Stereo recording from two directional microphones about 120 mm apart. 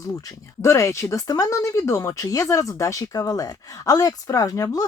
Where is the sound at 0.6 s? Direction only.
25° left (ahead or behind).